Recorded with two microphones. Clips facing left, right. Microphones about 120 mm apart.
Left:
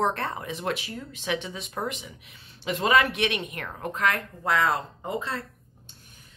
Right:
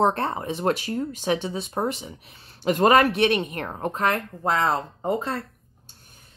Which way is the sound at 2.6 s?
45° right (ahead or behind).